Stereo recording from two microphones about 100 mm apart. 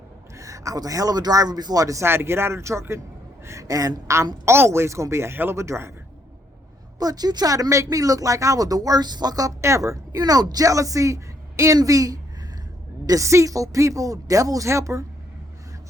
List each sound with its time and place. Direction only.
0.3 s a woman's voice: 35° right (ahead or behind)
7.0 s speech: 40° right (ahead or behind)